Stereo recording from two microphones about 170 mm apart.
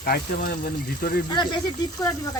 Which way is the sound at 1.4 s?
25° left (ahead or behind).